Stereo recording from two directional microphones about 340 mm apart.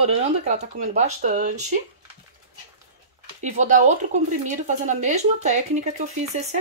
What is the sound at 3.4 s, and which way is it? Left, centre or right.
Speech, right.